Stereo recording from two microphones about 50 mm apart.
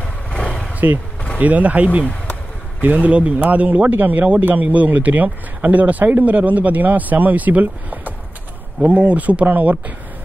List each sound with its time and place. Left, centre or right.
0.0 s vehicle: centre
0.8 s speech: right
1.4 s speech: right